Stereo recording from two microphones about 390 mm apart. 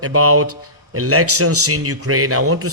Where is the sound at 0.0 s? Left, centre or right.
Right.